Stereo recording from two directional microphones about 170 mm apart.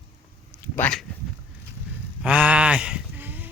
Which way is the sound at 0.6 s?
10° left (ahead or behind).